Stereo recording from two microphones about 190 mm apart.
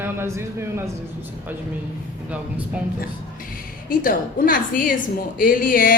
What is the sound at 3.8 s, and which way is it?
A woman's voice, 45° left (ahead or behind).